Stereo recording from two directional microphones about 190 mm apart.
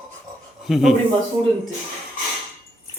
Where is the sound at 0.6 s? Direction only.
Centre (ahead or behind).